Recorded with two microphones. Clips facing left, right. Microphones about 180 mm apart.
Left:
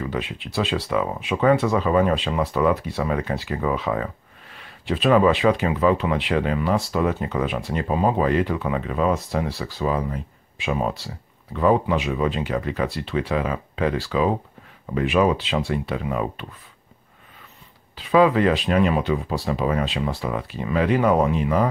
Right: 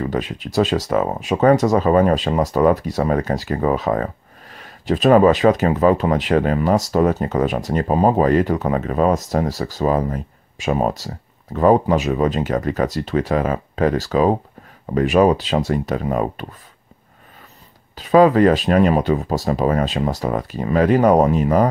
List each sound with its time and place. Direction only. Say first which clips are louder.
0.0 s speech: right 5 dB; 40° right (ahead or behind)
17.9 s speech: right 5 dB; 40° right (ahead or behind)